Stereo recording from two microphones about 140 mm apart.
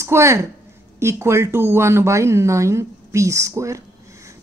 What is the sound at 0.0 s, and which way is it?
A woman's voice, 20° right (ahead or behind).